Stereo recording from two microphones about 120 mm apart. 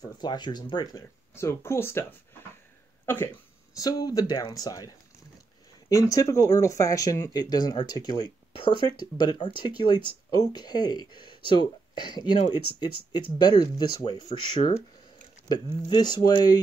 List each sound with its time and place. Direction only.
0.0 s speech: 35° left (ahead or behind)
1.3 s speech: 20° left (ahead or behind)
3.7 s speech: 30° left (ahead or behind)